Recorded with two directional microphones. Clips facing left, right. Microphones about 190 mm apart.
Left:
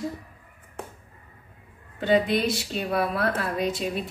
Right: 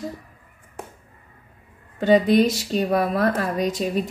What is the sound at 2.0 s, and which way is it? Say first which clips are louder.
A woman's voice: right 6 dB; 45° right (ahead or behind).